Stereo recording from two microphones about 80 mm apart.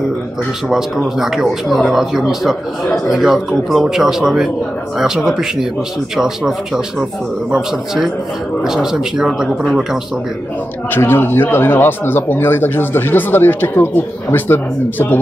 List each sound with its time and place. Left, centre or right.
0.7 s speech: centre
10.9 s speech: left